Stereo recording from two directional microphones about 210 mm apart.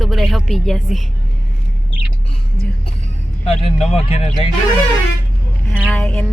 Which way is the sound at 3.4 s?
30° left (ahead or behind).